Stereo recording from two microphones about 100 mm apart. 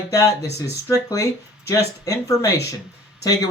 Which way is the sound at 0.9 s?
30° left (ahead or behind).